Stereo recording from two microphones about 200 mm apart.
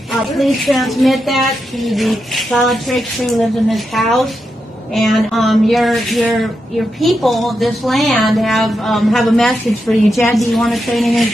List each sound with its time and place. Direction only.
0.4 s a woman's voice: centre (ahead or behind)